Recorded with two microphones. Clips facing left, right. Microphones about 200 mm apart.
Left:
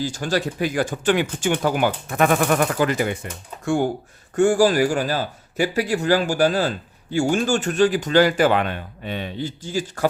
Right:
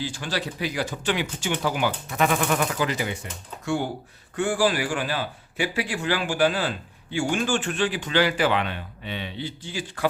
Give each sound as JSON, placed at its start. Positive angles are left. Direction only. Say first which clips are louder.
{"t": 0.0, "sound": "a man's voice", "louder": "left 6 dB", "side_deg": 45}
{"t": 4.4, "sound": "a man's voice", "louder": "left 7 dB", "side_deg": 45}